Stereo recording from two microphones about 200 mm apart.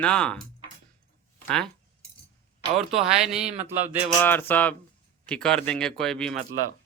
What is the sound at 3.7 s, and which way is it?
Speech, 10° right (ahead or behind).